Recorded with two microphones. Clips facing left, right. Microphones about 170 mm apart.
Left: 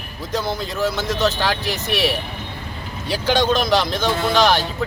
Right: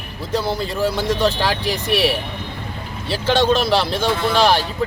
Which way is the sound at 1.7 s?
35° right (ahead or behind).